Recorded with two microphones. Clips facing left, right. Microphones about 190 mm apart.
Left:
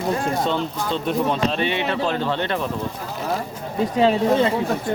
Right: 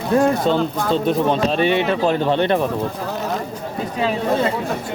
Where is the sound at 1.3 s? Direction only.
45° right (ahead or behind).